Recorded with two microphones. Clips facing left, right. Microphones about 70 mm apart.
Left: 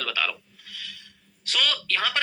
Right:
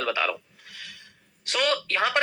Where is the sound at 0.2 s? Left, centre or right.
Right.